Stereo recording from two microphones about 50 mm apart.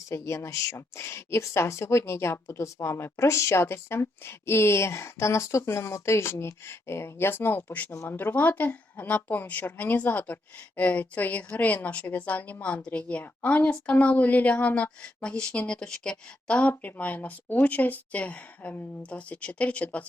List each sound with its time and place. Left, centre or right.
0.1 s a woman's voice: left